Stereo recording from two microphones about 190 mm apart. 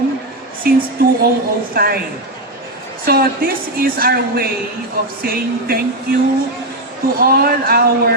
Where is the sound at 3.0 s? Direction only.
50° right (ahead or behind).